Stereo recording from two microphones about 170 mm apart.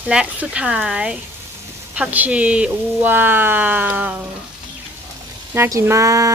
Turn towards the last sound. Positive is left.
turn(degrees=-20)  # may be behind; listen again after turning